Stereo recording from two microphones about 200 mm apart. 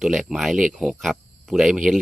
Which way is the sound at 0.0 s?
Centre (ahead or behind).